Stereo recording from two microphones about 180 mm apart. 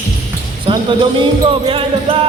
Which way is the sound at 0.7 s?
25° right (ahead or behind).